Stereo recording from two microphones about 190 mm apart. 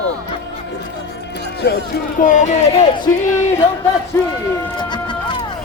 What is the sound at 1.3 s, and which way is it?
Speech, 60° left (ahead or behind).